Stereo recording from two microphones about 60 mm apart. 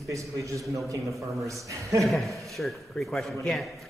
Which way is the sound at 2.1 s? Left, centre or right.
Centre.